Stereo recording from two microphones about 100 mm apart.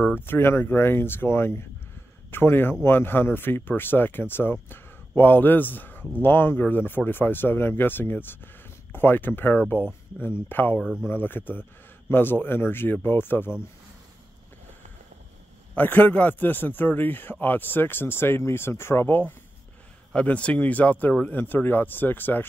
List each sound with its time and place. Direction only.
0.2 s speech: 20° left (ahead or behind)
10.8 s speech: 5° right (ahead or behind)
11.1 s speech: 20° left (ahead or behind)
15.7 s speech: 20° left (ahead or behind)